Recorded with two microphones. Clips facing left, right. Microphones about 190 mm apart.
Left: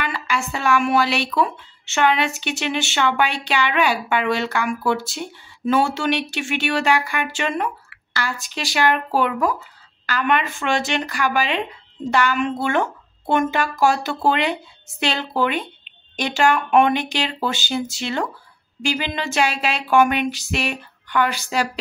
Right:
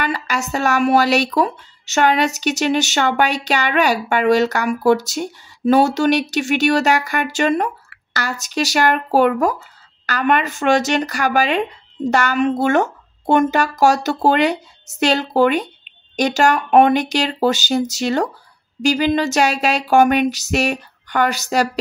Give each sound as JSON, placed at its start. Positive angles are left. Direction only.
{"t": 0.0, "sound": "speech", "side_deg": -40}